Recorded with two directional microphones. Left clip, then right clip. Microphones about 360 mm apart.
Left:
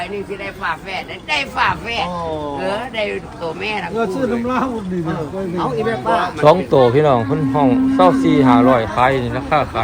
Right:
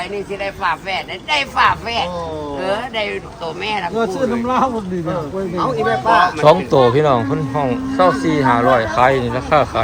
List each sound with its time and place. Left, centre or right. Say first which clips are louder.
1.3 s speech: right 3 dB; centre
6.1 s speech: right 2 dB; centre
8.2 s speech: left 3 dB; centre
8.4 s speech: right 2 dB; centre